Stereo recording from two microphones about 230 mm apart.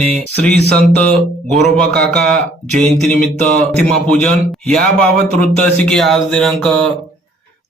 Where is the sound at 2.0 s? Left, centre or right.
Centre.